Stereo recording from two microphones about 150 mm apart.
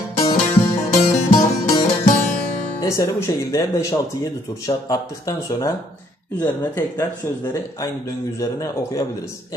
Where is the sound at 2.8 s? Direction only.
20° left (ahead or behind).